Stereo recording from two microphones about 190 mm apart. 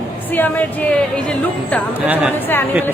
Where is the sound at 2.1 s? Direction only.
10° right (ahead or behind).